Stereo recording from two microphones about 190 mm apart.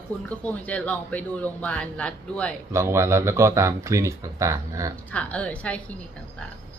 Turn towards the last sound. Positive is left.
turn(degrees=5)  # may be behind; listen again after turning